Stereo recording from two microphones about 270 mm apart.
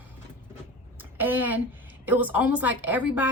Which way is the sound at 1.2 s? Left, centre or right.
Centre.